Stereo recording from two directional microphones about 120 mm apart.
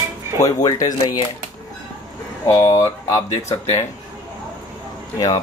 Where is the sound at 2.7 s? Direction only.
25° left (ahead or behind).